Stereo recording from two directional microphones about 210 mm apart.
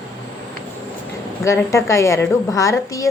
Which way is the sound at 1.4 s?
15° left (ahead or behind).